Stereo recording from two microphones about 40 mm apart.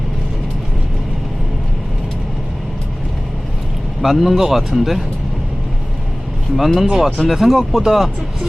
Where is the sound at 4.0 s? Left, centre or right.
Centre.